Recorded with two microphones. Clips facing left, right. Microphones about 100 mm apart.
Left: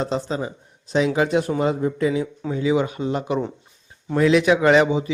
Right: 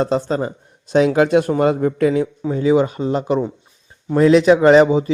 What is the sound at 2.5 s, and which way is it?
A man's voice, 40° right (ahead or behind).